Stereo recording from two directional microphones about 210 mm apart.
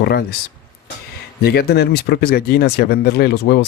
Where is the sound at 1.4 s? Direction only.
50° left (ahead or behind).